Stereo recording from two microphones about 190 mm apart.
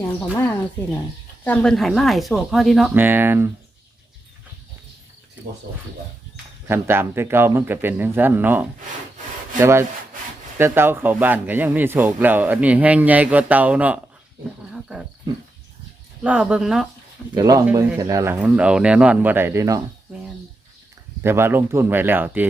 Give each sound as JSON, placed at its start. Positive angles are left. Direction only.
{"t": 0.2, "sound": "speech", "side_deg": 10}
{"t": 5.7, "sound": "speech", "side_deg": -60}
{"t": 6.7, "sound": "speech", "side_deg": -15}
{"t": 16.2, "sound": "speech", "side_deg": -5}
{"t": 17.3, "sound": "speech", "side_deg": -20}
{"t": 21.2, "sound": "speech", "side_deg": -10}